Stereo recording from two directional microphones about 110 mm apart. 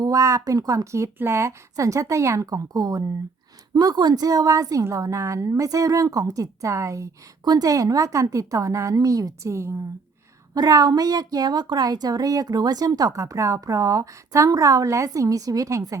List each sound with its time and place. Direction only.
0.0 s a woman's voice: 30° right (ahead or behind)